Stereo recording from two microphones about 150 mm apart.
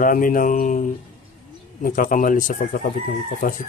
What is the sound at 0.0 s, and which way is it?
Speech, 65° left (ahead or behind).